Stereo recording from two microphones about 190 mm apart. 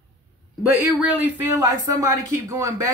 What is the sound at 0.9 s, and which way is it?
Speech, 10° right (ahead or behind).